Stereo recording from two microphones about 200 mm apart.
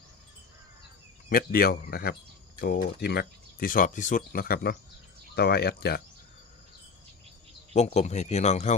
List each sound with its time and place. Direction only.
1.3 s speech: 45° left (ahead or behind)
7.7 s speech: 35° left (ahead or behind)